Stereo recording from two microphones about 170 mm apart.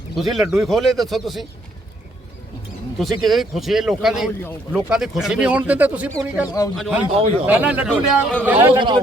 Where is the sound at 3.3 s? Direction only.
Centre (ahead or behind).